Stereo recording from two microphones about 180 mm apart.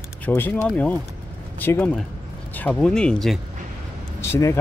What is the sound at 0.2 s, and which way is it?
Speech, 10° left (ahead or behind).